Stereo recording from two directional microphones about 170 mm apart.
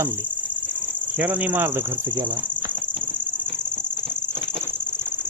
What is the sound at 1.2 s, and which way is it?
Cricket, 10° right (ahead or behind).